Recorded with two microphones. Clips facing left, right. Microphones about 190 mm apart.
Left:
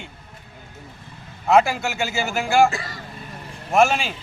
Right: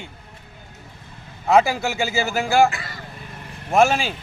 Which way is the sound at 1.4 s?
Centre (ahead or behind).